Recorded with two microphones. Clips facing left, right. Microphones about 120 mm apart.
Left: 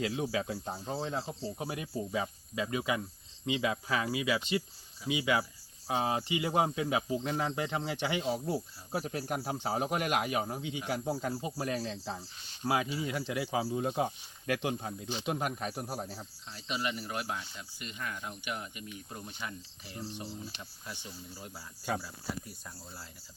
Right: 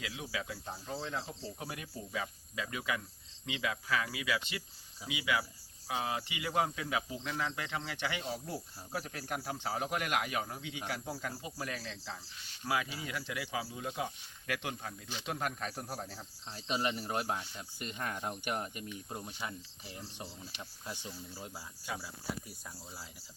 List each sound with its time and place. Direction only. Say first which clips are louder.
0.0 s speech: left 8 dB; 40° left (ahead or behind); by 16.2 s 10° left (ahead or behind)
16.5 s speech: right 1 dB; 35° right (ahead or behind)
19.1 s speech: even; 25° right (ahead or behind)
21.3 s speech: right 1 dB; 20° right (ahead or behind)
21.9 s speech: left 7 dB; 45° left (ahead or behind)